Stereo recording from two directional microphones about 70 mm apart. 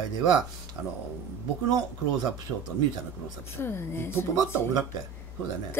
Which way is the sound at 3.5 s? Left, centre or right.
Left.